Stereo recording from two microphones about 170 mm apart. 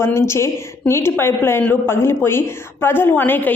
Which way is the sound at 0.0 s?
15° left (ahead or behind).